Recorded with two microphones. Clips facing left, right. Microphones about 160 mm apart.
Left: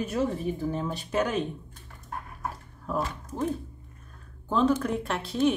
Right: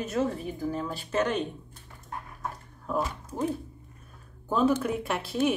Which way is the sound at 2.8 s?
5° right (ahead or behind).